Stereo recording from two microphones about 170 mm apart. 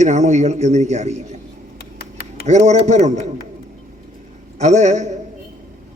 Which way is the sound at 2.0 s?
70° left (ahead or behind).